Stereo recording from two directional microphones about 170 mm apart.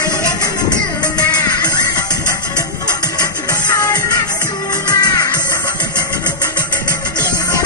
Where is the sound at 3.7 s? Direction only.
20° left (ahead or behind).